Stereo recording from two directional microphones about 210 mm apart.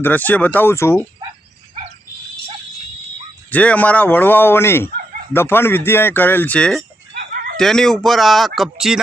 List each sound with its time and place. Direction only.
0.0 s speech: 10° left (ahead or behind)
3.5 s speech: 5° left (ahead or behind)
7.2 s a sound: 50° right (ahead or behind)
7.5 s speech: centre (ahead or behind)